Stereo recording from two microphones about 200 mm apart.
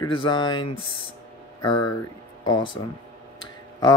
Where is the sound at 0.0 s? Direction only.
25° left (ahead or behind).